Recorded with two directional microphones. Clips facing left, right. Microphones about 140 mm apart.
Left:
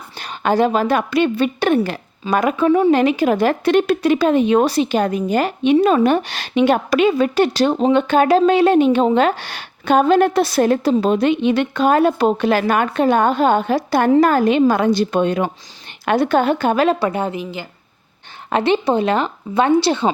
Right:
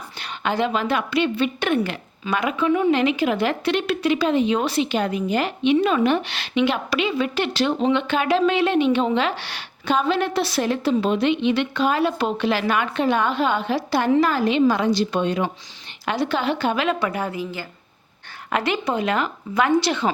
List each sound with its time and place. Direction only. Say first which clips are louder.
0.2 s a woman's voice: left 7 dB; 40° left (ahead or behind)